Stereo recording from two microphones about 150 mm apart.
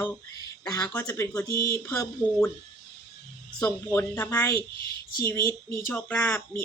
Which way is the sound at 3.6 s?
15° left (ahead or behind).